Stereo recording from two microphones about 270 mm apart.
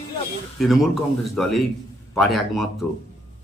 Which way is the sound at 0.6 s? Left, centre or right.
Centre.